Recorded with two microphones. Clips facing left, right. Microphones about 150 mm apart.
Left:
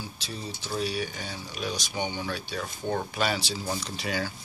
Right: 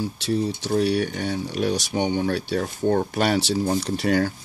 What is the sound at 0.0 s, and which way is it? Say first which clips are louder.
Speech: right 14 dB; 70° right (ahead or behind).